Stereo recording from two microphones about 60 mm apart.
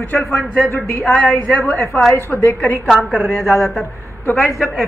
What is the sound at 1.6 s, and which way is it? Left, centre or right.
Speech, left.